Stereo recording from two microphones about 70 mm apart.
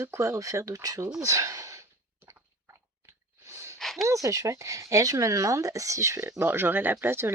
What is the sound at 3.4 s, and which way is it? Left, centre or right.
Gasp, right.